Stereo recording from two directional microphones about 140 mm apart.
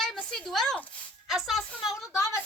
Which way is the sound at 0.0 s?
5° left (ahead or behind).